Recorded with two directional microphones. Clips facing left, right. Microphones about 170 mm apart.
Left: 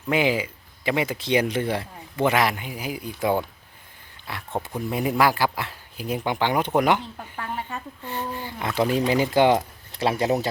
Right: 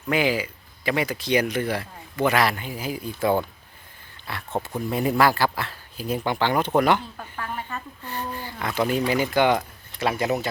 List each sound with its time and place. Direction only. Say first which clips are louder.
0.1 s speech: left 1 dB; 20° left (ahead or behind)